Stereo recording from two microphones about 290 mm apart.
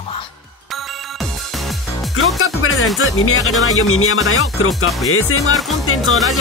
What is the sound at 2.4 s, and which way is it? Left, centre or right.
Music, left.